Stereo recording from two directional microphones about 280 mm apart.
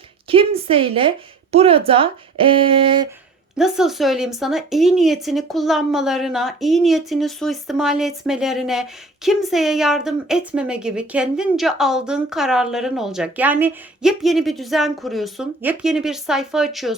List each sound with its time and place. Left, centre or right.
0.3 s a woman's voice: centre
3.6 s a woman's voice: centre